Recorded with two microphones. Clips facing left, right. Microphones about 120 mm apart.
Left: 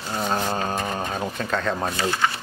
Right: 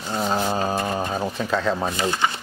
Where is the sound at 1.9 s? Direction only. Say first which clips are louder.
Right 1 dB; 15° right (ahead or behind).